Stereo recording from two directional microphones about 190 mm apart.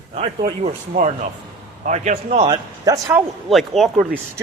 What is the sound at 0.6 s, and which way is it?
A man's voice, 40° right (ahead or behind).